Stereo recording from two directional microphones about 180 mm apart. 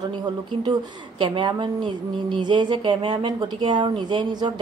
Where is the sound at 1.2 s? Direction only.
25° right (ahead or behind).